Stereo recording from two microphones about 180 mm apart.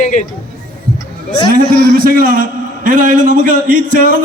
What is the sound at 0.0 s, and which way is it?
Speech, 45° left (ahead or behind).